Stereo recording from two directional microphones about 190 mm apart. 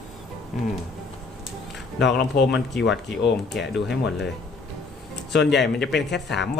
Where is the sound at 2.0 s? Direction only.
60° left (ahead or behind).